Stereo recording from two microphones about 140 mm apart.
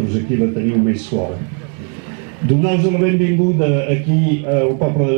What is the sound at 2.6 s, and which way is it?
A man's voice, 10° right (ahead or behind).